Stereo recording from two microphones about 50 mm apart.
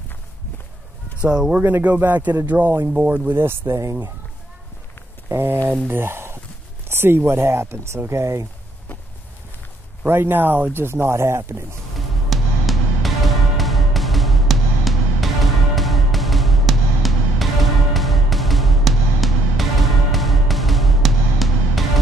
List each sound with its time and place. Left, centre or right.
1.2 s speech: centre
1.6 s speech: right
5.3 s speech: right
8.1 s speech: right
10.0 s speech: right
12.3 s music: centre